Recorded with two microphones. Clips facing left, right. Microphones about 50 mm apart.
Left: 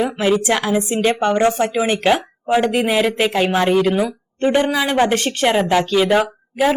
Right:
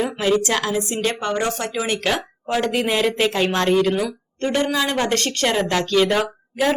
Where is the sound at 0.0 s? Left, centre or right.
Centre.